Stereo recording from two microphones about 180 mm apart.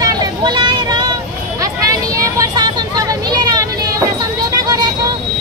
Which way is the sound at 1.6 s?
20° right (ahead or behind).